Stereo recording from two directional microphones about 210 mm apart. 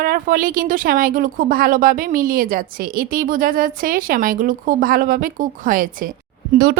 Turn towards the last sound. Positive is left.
turn(degrees=-45)  # may be behind; listen again after turning